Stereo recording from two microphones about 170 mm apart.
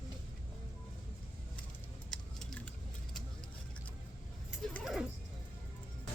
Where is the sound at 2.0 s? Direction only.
5° left (ahead or behind).